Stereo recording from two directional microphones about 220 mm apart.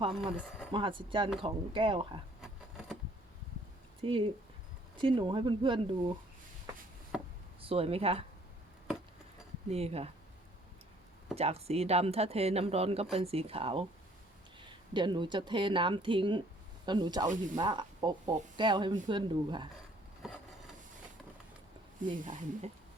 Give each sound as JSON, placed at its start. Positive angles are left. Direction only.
{"t": 0.7, "sound": "speech", "side_deg": -25}
{"t": 2.4, "sound": "insect", "side_deg": 0}
{"t": 4.0, "sound": "speech", "side_deg": -25}
{"t": 7.1, "sound": "chop", "side_deg": -5}
{"t": 7.6, "sound": "speech", "side_deg": -25}
{"t": 9.6, "sound": "speech", "side_deg": -30}
{"t": 11.3, "sound": "speech", "side_deg": -30}
{"t": 20.2, "sound": "a sound", "side_deg": 0}
{"t": 22.0, "sound": "speech", "side_deg": -35}